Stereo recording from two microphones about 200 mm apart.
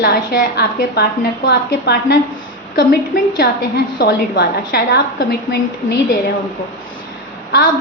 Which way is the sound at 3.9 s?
55° left (ahead or behind).